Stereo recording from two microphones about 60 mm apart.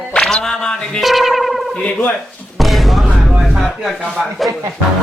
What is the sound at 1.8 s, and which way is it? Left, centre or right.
Speech, left.